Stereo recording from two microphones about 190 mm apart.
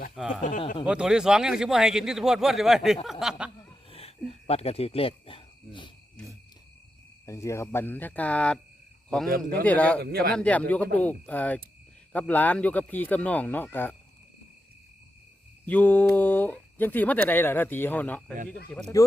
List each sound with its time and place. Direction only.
0.2 s speech: 5° right (ahead or behind)
0.4 s speech: 40° left (ahead or behind)
0.9 s speech: 5° right (ahead or behind)
3.8 s a sound: 30° left (ahead or behind)
4.3 s speech: 30° left (ahead or behind)
7.3 s a man's voice: 15° left (ahead or behind)
10.0 s speech: 55° right (ahead or behind)
10.3 s speech: 5° left (ahead or behind)
15.6 s speech: 10° left (ahead or behind)